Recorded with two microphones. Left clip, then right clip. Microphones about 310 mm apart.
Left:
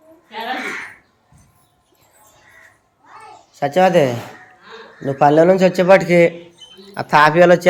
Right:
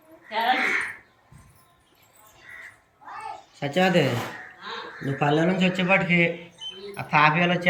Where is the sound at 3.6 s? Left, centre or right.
Centre.